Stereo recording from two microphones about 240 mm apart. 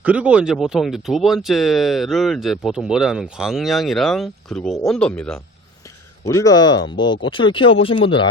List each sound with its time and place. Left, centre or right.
0.0 s speech: centre; by 8.3 s left